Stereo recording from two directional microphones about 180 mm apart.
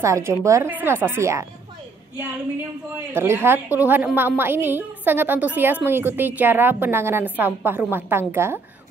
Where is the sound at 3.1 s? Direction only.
15° right (ahead or behind).